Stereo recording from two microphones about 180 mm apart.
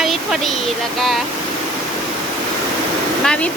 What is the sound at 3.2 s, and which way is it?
Speech, 5° left (ahead or behind).